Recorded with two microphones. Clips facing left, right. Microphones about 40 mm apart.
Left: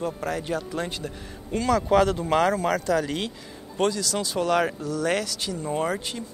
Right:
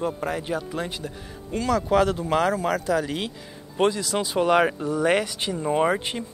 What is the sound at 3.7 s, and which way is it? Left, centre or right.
A man's voice, centre.